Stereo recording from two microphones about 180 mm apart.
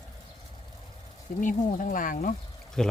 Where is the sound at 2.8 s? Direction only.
Centre (ahead or behind).